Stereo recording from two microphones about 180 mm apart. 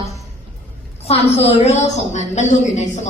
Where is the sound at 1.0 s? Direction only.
35° left (ahead or behind).